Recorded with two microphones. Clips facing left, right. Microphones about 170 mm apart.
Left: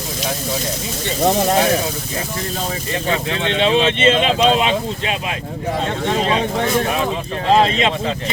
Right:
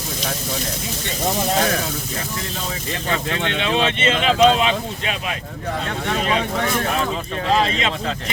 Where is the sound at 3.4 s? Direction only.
25° left (ahead or behind).